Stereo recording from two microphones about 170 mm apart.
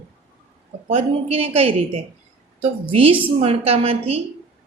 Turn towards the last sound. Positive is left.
turn(degrees=-35)  # may be behind; listen again after turning